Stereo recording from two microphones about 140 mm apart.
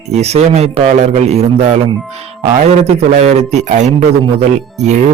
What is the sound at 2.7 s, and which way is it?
Speech, 50° right (ahead or behind).